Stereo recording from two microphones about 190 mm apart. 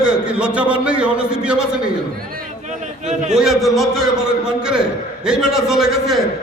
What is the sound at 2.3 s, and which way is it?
Speech, 45° right (ahead or behind).